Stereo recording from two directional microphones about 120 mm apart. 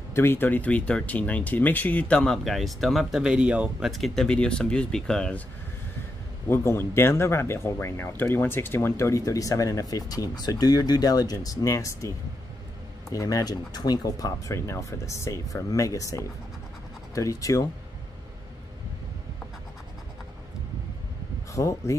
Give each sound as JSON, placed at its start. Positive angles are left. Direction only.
{"t": 0.1, "sound": "speech", "side_deg": 20}
{"t": 6.5, "sound": "speech", "side_deg": 20}
{"t": 13.1, "sound": "speech", "side_deg": 30}
{"t": 21.5, "sound": "speech", "side_deg": 25}